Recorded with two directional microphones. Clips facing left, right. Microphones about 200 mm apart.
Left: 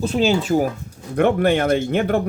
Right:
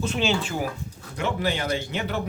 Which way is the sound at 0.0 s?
35° left (ahead or behind).